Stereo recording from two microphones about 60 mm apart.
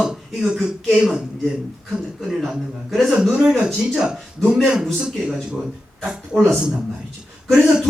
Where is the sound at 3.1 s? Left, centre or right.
Centre.